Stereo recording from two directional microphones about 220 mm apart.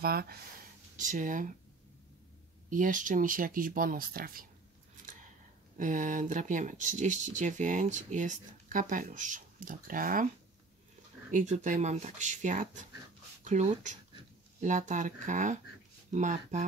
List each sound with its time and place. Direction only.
0.0 s speech: 45° right (ahead or behind)
2.7 s speech: 35° right (ahead or behind)
5.8 s speech: 35° right (ahead or behind)
11.3 s speech: 35° right (ahead or behind)